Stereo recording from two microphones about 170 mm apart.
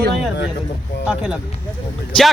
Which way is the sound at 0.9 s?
90° left.